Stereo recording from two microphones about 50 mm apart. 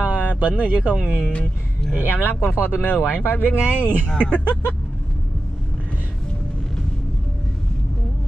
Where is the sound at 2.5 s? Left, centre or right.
Left.